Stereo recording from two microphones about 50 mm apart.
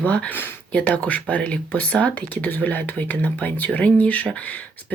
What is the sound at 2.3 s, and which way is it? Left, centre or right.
Speech, left.